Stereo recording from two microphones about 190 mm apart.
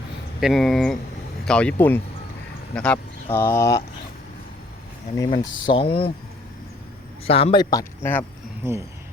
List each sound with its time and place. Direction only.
0.3 s speech: centre (ahead or behind); by 3.8 s 15° left (ahead or behind)
5.1 s speech: 20° left (ahead or behind)
7.3 s speech: 30° left (ahead or behind)